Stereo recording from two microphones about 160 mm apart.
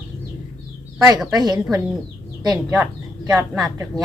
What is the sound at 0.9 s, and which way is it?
Speech, 20° right (ahead or behind).